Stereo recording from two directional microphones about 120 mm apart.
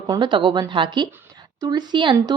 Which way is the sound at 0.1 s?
40° right (ahead or behind).